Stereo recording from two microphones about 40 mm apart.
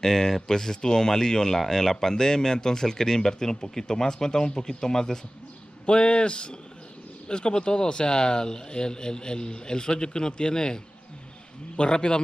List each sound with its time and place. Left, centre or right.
0.0 s speech: centre
5.9 s speech: left